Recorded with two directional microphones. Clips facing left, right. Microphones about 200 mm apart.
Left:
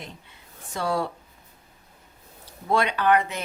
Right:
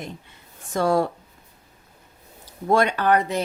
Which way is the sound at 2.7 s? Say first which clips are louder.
Right 2 dB; 45° right (ahead or behind).